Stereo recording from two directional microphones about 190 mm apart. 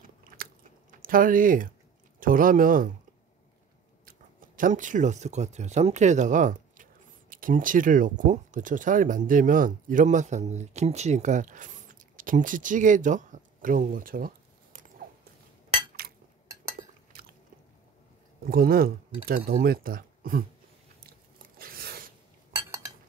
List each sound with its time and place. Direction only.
1.0 s speech: 45° right (ahead or behind)
4.0 s speech: 45° right (ahead or behind)
18.4 s speech: 50° right (ahead or behind)
21.5 s a sound: 50° right (ahead or behind)
22.5 s cutlery: 15° right (ahead or behind)